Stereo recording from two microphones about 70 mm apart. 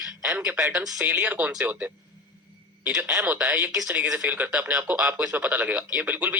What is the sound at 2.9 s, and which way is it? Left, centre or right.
Speech, centre.